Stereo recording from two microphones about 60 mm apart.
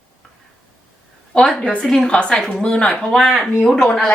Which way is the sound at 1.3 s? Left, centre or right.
Centre.